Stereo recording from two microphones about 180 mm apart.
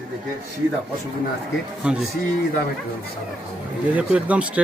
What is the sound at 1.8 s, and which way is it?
Speech, 5° right (ahead or behind).